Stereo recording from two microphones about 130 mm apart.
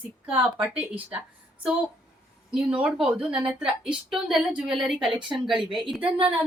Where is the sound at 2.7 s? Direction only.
10° right (ahead or behind).